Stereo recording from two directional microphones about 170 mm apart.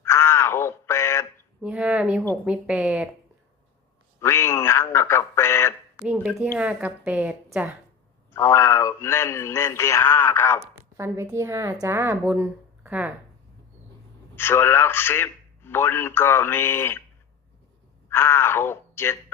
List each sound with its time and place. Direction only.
0.0 s a sound: 15° left (ahead or behind)
1.6 s a woman's voice: 5° right (ahead or behind)
4.2 s a man's voice: 15° left (ahead or behind)
6.5 s a woman's voice: 10° right (ahead or behind)
8.3 s a man's voice: 15° left (ahead or behind)
10.9 s a woman's voice: 15° right (ahead or behind)
14.3 s a man's voice: 15° left (ahead or behind)
18.1 s speech: 15° left (ahead or behind)